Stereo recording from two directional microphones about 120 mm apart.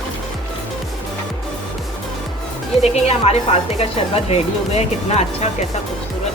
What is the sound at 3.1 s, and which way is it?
Speech, 60° left (ahead or behind).